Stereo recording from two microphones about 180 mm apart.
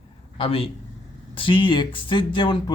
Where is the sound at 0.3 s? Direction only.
30° left (ahead or behind).